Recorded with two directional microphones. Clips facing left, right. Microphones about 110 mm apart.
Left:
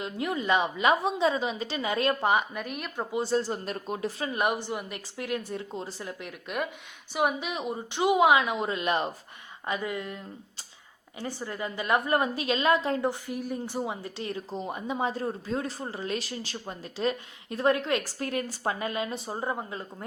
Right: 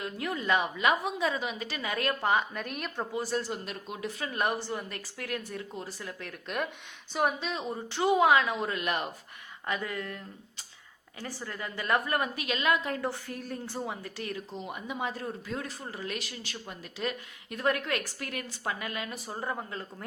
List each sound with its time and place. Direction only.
0.0 s speech: 20° left (ahead or behind)
2.6 s speech: centre (ahead or behind)
3.1 s speech: 25° left (ahead or behind)
4.3 s speech: 15° left (ahead or behind)
7.1 s a woman's voice: 10° left (ahead or behind)
11.2 s speech: 20° left (ahead or behind)
13.1 s speech: 15° left (ahead or behind)